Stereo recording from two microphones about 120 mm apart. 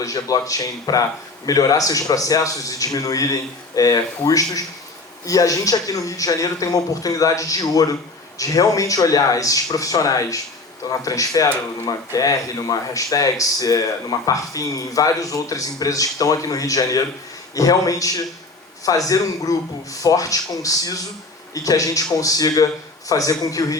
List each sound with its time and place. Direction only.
0.0 s speech: 30° left (ahead or behind)